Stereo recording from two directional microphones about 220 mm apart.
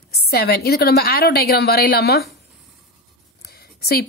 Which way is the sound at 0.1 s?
45° left (ahead or behind).